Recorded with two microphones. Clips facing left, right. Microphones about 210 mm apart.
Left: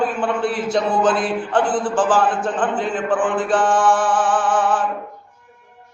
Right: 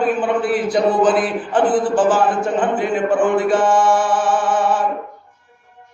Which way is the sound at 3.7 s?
10° right (ahead or behind).